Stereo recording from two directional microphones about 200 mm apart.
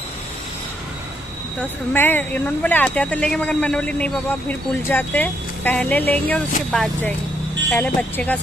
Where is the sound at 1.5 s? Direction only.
10° left (ahead or behind).